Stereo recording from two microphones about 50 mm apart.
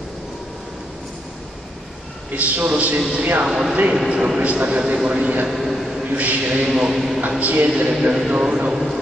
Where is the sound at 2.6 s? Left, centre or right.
Right.